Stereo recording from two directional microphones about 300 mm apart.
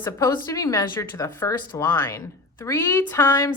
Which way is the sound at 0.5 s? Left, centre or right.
Centre.